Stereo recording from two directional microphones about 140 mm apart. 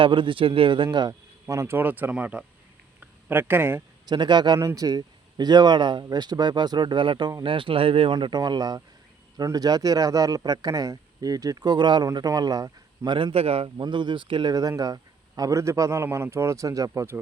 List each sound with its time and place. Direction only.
0.0 s speech: 35° right (ahead or behind); by 3.8 s 15° right (ahead or behind)
4.0 s speech: 30° right (ahead or behind)
13.1 s speech: 35° right (ahead or behind)
13.8 s speech: 35° right (ahead or behind)